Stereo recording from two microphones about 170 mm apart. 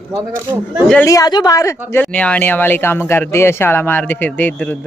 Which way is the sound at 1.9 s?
5° left (ahead or behind).